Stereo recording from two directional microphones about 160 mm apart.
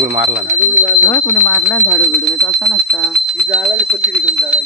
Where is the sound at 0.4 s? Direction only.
50° right (ahead or behind).